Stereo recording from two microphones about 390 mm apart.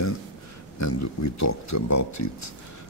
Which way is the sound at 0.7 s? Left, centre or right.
Left.